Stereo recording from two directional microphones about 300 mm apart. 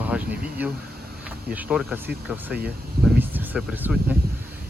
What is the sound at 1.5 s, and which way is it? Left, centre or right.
Speech, centre.